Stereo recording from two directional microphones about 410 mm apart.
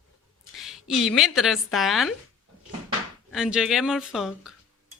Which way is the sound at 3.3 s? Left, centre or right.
Centre.